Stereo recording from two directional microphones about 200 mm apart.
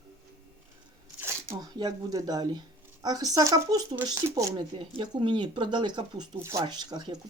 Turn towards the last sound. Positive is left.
turn(degrees=-20)  # may be behind; listen again after turning